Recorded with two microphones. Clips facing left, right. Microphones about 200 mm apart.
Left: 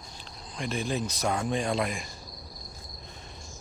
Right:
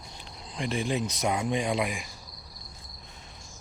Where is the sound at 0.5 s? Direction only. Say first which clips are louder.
Right 2 dB; 25° right (ahead or behind).